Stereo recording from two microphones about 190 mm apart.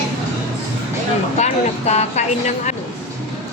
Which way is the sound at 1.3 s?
35° left (ahead or behind).